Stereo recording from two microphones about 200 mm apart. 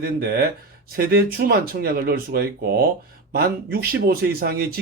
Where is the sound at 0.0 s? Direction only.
50° right (ahead or behind).